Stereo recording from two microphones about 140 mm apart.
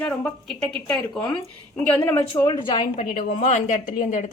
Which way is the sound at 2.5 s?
35° left (ahead or behind).